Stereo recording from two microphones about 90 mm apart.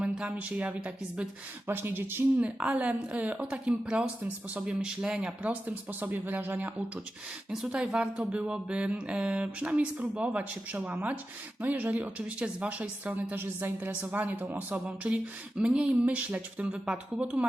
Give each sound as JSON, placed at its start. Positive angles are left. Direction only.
{"t": 0.0, "sound": "speech", "side_deg": -10}
{"t": 1.6, "sound": "speech", "side_deg": -25}
{"t": 2.4, "sound": "speech", "side_deg": -15}